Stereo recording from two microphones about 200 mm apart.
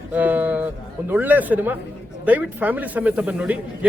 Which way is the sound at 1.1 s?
10° right (ahead or behind).